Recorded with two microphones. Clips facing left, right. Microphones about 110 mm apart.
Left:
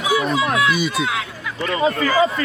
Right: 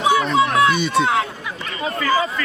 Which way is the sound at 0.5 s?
30° right (ahead or behind).